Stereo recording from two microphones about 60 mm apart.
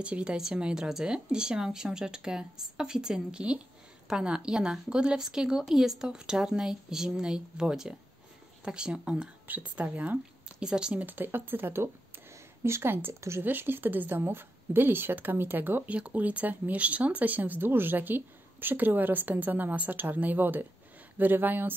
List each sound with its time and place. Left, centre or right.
0.0 s a woman's voice: centre
9.5 s speech: right
10.6 s a woman's voice: centre
11.0 s speech: right